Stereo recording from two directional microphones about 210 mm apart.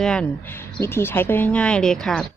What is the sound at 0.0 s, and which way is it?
Speech, 5° left (ahead or behind).